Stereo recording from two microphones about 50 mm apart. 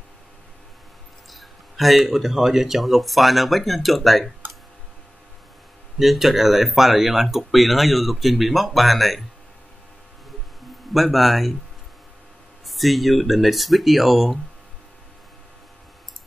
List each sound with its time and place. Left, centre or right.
1.3 s speech: centre
5.9 s speech: centre
10.9 s speech: centre
12.6 s speech: centre